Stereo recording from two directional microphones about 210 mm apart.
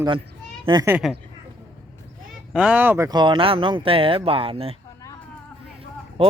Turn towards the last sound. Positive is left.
turn(degrees=-25)  # may be behind; listen again after turning